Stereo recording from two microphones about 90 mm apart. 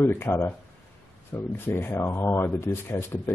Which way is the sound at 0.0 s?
25° left (ahead or behind).